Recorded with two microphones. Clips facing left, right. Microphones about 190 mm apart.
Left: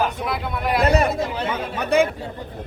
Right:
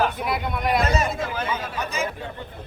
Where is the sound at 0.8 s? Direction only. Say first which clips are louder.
Left 5 dB; 60° left (ahead or behind).